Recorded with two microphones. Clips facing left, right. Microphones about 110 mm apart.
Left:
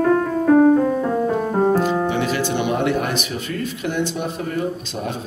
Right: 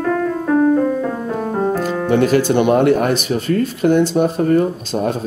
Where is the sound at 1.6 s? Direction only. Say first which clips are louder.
Left 2 dB; 25° left (ahead or behind).